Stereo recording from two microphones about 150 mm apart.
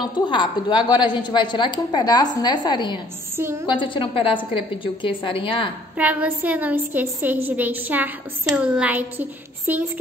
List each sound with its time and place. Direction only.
0.3 s a woman's voice: 30° left (ahead or behind)
3.3 s a woman's voice: 15° right (ahead or behind)
3.6 s a woman's voice: 35° left (ahead or behind)
5.9 s a woman's voice: 10° right (ahead or behind)